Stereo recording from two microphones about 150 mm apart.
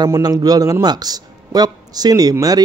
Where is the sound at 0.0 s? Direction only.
25° right (ahead or behind).